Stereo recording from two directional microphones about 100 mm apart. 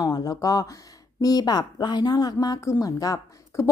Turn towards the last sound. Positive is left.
turn(degrees=30)  # may be behind; listen again after turning